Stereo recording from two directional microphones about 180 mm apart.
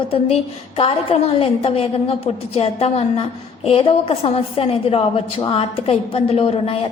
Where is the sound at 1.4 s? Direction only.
30° left (ahead or behind).